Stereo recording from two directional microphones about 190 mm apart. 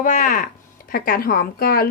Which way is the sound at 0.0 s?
45° left (ahead or behind).